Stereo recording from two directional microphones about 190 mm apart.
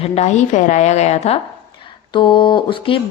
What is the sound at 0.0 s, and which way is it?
A woman's voice, 35° left (ahead or behind).